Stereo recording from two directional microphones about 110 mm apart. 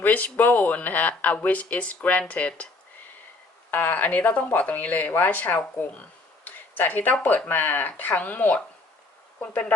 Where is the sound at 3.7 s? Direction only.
15° left (ahead or behind).